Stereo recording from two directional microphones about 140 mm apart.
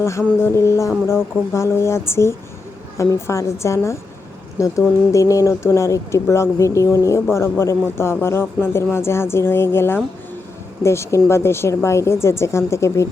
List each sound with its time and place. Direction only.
0.0 s a woman's voice: 20° left (ahead or behind)